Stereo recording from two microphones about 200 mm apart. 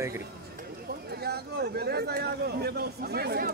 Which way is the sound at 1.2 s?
55° right (ahead or behind).